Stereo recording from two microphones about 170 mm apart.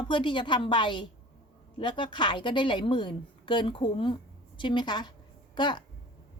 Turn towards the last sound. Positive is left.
turn(degrees=25)  # may be behind; listen again after turning